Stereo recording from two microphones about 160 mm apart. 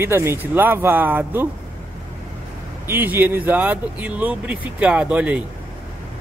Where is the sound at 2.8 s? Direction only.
15° right (ahead or behind).